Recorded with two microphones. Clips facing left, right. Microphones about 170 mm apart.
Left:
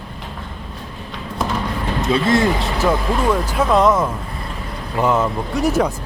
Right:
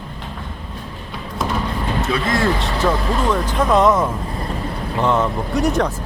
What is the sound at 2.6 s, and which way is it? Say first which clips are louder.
Speech: left 1 dB; 10° left (ahead or behind).